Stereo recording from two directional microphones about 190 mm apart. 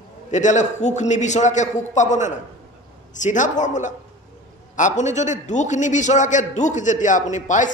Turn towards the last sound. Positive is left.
turn(degrees=40)  # may be behind; listen again after turning